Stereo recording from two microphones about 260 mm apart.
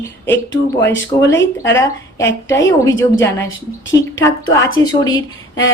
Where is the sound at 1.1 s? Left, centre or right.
Centre.